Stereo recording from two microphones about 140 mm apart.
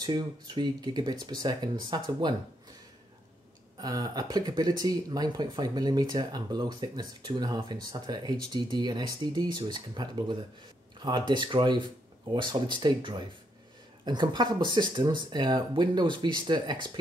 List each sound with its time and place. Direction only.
0.0 s speech: 30° right (ahead or behind)
3.7 s speech: 25° right (ahead or behind)